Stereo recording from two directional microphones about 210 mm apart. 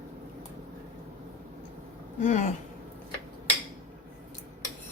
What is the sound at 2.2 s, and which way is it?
Speech, 35° left (ahead or behind).